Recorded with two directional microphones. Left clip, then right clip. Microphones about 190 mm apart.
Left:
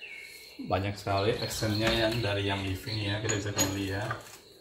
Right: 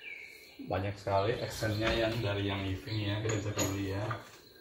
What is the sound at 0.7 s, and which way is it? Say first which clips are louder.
Speech: left 3 dB; 60° left (ahead or behind).